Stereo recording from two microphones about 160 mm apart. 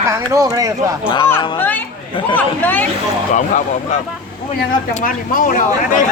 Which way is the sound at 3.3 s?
50° left (ahead or behind).